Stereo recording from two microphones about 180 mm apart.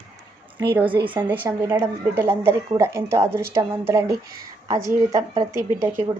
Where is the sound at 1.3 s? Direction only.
15° right (ahead or behind).